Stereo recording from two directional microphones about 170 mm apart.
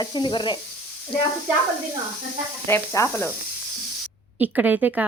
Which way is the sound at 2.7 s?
15° left (ahead or behind).